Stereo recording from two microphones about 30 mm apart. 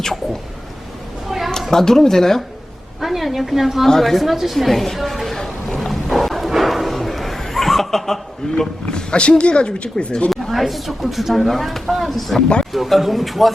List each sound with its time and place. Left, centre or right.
1.7 s speech: centre
3.0 s a woman's voice: centre
3.8 s a woman's voice: centre
5.9 s wild animals: centre
6.5 s a sound: centre
8.9 s speech: left
10.5 s a woman's voice: centre